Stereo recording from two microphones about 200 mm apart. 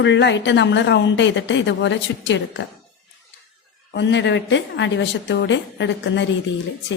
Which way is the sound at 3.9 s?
60° left (ahead or behind).